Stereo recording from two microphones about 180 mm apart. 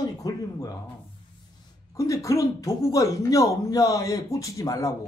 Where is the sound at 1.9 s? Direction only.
15° left (ahead or behind).